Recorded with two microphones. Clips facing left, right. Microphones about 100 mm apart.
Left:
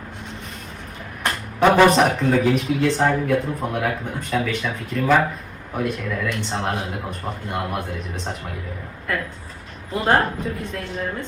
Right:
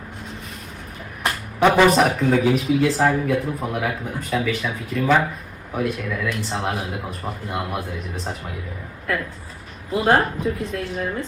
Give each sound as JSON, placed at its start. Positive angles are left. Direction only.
{"t": 1.2, "sound": "a sound", "side_deg": -5}
{"t": 1.9, "sound": "speech", "side_deg": 0}
{"t": 9.9, "sound": "speech", "side_deg": -5}